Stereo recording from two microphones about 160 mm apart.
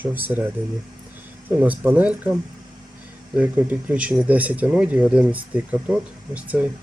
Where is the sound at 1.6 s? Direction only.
10° right (ahead or behind).